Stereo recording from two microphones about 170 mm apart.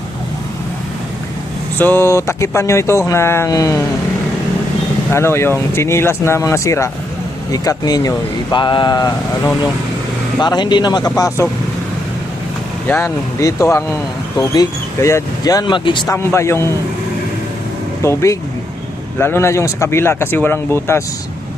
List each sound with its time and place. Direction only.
1.8 s speech: 10° left (ahead or behind)
5.1 s speech: 15° left (ahead or behind)
10.4 s speech: 25° left (ahead or behind)
12.9 s speech: 15° left (ahead or behind)
16.1 s speech: 15° left (ahead or behind)
18.0 s speech: 15° left (ahead or behind)